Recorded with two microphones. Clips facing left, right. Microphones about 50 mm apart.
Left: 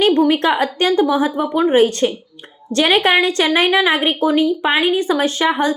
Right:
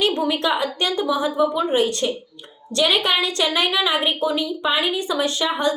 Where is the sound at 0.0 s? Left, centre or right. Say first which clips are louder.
Left 7 dB; left.